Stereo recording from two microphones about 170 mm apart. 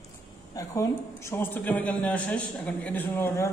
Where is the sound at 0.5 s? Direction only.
20° left (ahead or behind).